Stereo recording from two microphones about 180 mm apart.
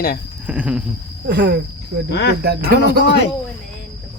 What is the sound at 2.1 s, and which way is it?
Speech, 70° left (ahead or behind).